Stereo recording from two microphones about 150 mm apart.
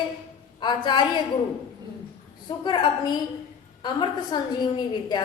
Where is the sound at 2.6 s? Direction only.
30° left (ahead or behind).